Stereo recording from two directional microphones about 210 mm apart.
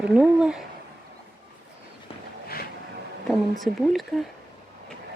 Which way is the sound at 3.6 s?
Centre (ahead or behind).